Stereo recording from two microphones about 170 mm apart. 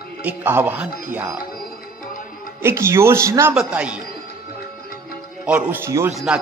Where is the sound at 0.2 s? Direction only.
10° right (ahead or behind).